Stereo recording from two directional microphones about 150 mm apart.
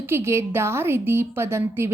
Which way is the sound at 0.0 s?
15° right (ahead or behind).